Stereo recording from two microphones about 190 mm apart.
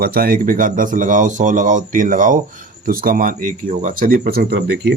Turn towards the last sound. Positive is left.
turn(degrees=-60)  # may be behind; listen again after turning